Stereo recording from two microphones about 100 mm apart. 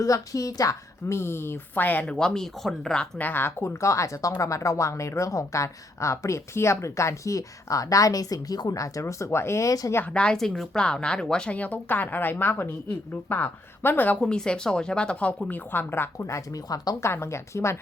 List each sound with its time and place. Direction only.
0.0 s a woman's voice: 35° left (ahead or behind)
10.0 s a woman's voice: 10° left (ahead or behind); by 17.7 s 30° left (ahead or behind)